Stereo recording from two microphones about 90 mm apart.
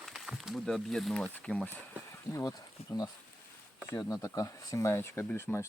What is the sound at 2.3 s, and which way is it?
Speech, 40° left (ahead or behind).